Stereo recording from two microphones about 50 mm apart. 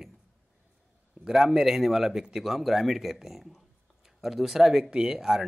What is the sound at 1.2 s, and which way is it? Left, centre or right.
Speech, centre.